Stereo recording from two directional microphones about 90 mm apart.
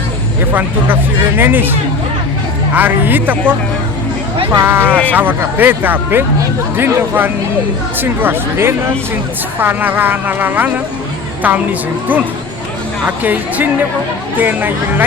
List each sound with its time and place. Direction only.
1.4 s speech: 20° right (ahead or behind)
4.6 s speech: 25° right (ahead or behind)
13.2 s speech: 20° right (ahead or behind)